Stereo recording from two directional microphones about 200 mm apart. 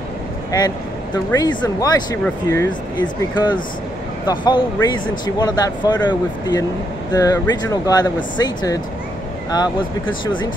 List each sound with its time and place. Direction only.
0.5 s speech: 20° left (ahead or behind)
10.2 s speech: 25° left (ahead or behind)